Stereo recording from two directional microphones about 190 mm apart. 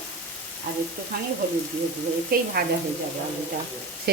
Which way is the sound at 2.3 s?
50° right (ahead or behind).